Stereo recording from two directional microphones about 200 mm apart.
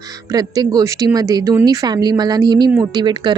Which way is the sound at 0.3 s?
20° right (ahead or behind).